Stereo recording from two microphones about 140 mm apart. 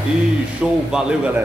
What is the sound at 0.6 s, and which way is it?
Speech, 5° right (ahead or behind).